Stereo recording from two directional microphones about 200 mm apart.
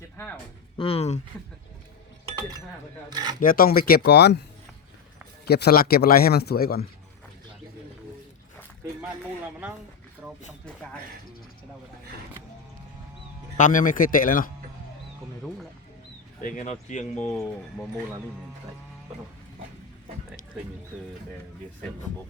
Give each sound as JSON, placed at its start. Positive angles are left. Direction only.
{"t": 0.8, "sound": "speech", "side_deg": 30}
{"t": 3.1, "sound": "speech", "side_deg": -20}
{"t": 3.4, "sound": "speech", "side_deg": 45}
{"t": 5.5, "sound": "speech", "side_deg": 55}
{"t": 13.6, "sound": "speech", "side_deg": 40}
{"t": 15.4, "sound": "speech", "side_deg": 0}
{"t": 16.4, "sound": "speech", "side_deg": 40}
{"t": 17.2, "sound": "speech", "side_deg": 5}
{"t": 20.9, "sound": "speech", "side_deg": -5}